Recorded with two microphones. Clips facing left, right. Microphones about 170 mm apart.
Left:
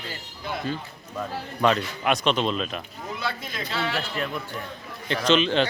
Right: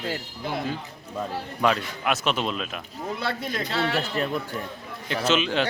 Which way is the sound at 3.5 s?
40° right (ahead or behind).